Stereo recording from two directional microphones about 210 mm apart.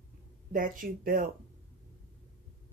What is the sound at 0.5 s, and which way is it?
Speech, 40° right (ahead or behind).